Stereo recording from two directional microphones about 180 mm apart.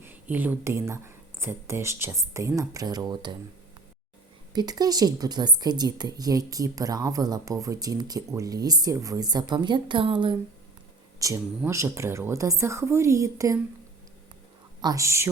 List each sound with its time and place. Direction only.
0.0 s speech: 10° right (ahead or behind)
4.5 s a woman's voice: 20° right (ahead or behind)
11.2 s speech: 15° right (ahead or behind)
14.8 s speech: 20° right (ahead or behind)